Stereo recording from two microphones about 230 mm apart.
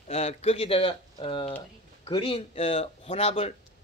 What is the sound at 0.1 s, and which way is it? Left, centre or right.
Speech, left.